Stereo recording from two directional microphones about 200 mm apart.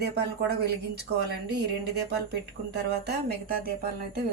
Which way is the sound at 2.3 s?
55° right (ahead or behind).